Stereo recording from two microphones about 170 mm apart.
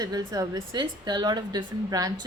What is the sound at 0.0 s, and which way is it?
A woman's voice, 25° right (ahead or behind).